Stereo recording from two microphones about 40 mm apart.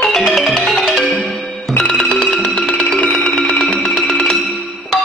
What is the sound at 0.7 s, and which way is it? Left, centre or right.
Marimba, centre.